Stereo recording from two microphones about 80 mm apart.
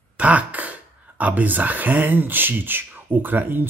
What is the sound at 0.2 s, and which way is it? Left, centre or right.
Speech, centre.